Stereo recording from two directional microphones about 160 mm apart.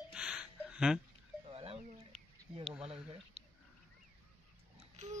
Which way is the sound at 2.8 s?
40° right (ahead or behind).